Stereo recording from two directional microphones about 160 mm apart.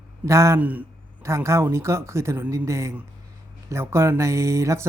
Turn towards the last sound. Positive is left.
turn(degrees=-20)  # may be behind; listen again after turning